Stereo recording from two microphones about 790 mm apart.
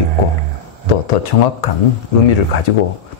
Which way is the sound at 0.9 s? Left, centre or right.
Left.